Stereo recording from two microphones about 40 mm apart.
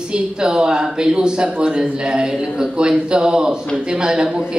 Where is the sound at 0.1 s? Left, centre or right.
Right.